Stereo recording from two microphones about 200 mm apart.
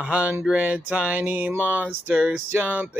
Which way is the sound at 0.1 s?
5° right (ahead or behind).